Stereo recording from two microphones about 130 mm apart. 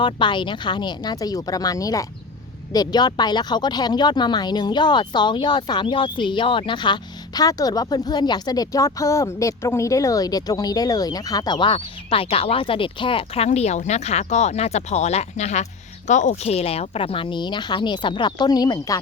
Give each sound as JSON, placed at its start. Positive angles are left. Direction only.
{"t": 0.0, "sound": "speech", "side_deg": 35}